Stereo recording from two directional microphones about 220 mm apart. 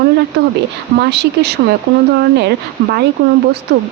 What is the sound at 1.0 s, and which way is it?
A woman's voice, 50° right (ahead or behind).